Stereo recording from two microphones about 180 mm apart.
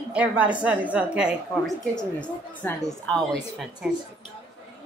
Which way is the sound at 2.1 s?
5° left (ahead or behind).